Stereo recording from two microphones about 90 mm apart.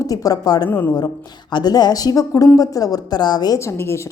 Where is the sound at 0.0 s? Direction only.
40° left (ahead or behind).